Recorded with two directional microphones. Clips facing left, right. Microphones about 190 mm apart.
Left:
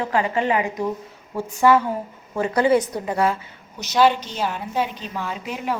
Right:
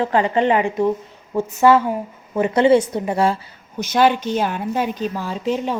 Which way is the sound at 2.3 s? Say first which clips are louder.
Right 4 dB; 20° right (ahead or behind).